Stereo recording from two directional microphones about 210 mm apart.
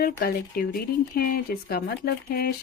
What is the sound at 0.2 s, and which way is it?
Speech, 45° left (ahead or behind).